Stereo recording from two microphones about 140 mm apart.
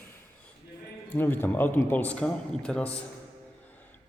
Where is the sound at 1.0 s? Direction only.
15° left (ahead or behind).